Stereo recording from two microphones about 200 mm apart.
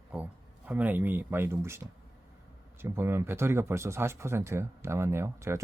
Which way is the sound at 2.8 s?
10° right (ahead or behind).